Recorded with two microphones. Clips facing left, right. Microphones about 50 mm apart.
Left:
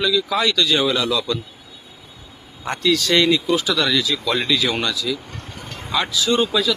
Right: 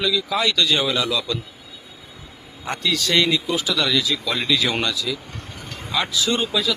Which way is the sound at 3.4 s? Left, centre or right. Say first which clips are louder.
Left 4 dB; centre.